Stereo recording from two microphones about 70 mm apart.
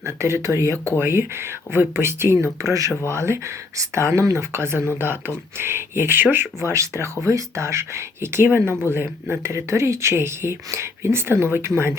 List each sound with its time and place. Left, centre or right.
0.0 s speech: right
0.9 s speech: right
3.1 s speech: right